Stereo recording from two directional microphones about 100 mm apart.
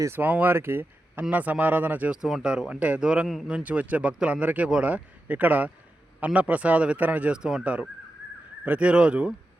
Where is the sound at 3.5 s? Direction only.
15° right (ahead or behind).